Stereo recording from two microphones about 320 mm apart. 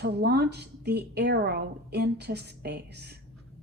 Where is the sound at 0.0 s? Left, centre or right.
Right.